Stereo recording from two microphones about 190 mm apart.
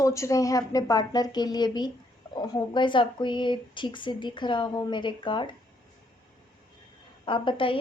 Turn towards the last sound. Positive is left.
turn(degrees=25)  # may be behind; listen again after turning